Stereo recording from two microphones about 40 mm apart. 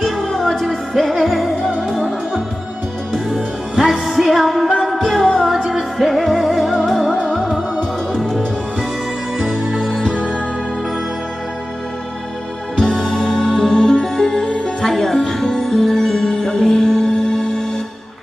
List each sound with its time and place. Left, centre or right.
0.0 s music: centre
3.1 s music: centre
3.8 s music: centre
7.8 s music: centre
9.8 s music: centre
12.7 s music: centre